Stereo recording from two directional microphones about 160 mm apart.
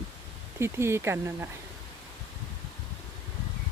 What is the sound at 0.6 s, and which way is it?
Speech, 15° right (ahead or behind).